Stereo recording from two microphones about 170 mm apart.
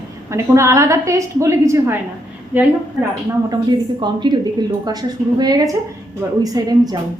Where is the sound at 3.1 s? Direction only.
25° right (ahead or behind).